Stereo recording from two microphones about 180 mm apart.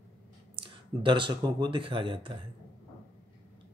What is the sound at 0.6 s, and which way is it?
Speech, 25° right (ahead or behind).